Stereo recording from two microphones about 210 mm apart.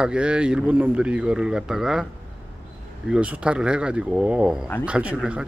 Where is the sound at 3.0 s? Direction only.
5° right (ahead or behind).